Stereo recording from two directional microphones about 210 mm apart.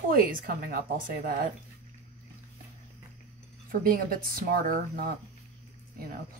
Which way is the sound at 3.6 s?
45° right (ahead or behind).